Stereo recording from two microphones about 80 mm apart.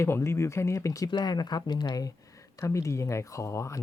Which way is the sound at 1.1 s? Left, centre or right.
Left.